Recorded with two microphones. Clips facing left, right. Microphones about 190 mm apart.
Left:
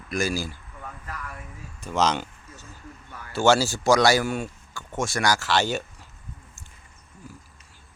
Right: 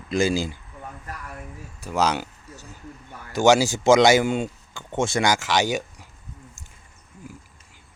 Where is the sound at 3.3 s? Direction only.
15° right (ahead or behind).